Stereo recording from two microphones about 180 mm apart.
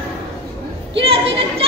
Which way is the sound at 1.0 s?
30° right (ahead or behind).